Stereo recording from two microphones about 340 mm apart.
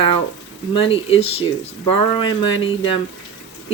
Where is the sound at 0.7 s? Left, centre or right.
Centre.